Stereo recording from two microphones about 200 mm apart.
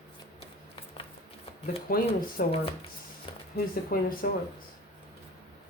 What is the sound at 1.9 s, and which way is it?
Speech, 50° left (ahead or behind).